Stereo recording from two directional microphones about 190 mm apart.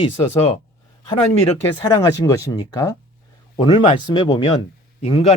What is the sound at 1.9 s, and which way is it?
Speech, 20° left (ahead or behind).